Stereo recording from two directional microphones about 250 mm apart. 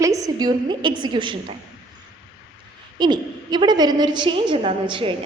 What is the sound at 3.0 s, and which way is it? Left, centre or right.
A woman's voice, centre.